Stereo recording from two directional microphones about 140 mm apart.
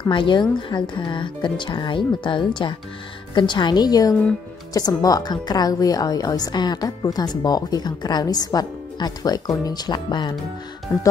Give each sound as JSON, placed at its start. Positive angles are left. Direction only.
{"t": 0.0, "sound": "a woman's voice", "side_deg": 35}
{"t": 10.9, "sound": "speech", "side_deg": 15}